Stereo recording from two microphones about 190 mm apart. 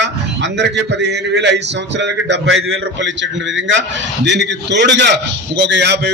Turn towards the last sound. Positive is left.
turn(degrees=-65)  # may be behind; listen again after turning